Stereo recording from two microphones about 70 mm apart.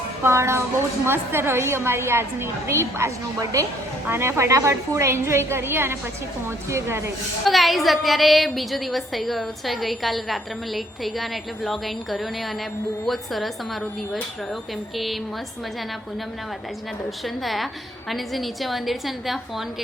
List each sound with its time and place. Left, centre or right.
0.2 s a woman's voice: right
7.4 s a woman's voice: centre
14.9 s a woman's voice: centre
17.2 s a woman's voice: centre